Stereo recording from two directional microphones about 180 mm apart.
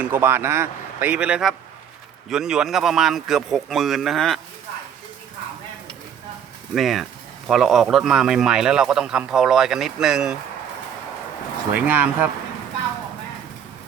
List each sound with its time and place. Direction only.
0.0 s a man's voice: 10° right (ahead or behind)
6.7 s speech: centre (ahead or behind)
11.7 s a man's voice: 10° right (ahead or behind)